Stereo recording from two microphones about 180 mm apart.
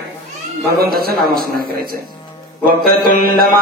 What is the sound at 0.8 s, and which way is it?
A man's voice, 55° right (ahead or behind).